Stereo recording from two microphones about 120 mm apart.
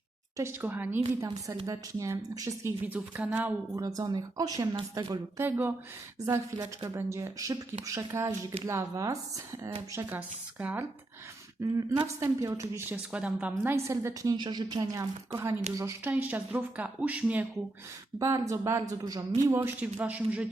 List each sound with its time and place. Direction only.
0.3 s speech: 20° right (ahead or behind)
1.6 s a woman's voice: 30° right (ahead or behind)
2.8 s speech: 10° right (ahead or behind)
3.8 s a woman's voice: 30° right (ahead or behind)
5.4 s a woman's voice: 20° right (ahead or behind)
10.2 s speech: 15° right (ahead or behind)
11.6 s a woman's voice: 25° right (ahead or behind)
12.9 s speech: 10° right (ahead or behind)
13.7 s a woman's voice: 25° right (ahead or behind)
16.1 s speech: 10° right (ahead or behind)
18.2 s a woman's voice: 25° right (ahead or behind); by 20.5 s 10° right (ahead or behind)